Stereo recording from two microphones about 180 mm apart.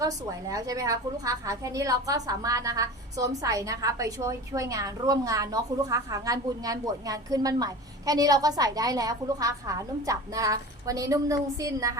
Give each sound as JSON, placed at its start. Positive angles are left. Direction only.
{"t": 0.0, "sound": "a woman's voice", "side_deg": -20}